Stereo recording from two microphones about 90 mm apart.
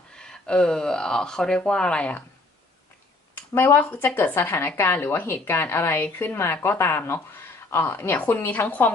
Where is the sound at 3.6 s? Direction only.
25° left (ahead or behind).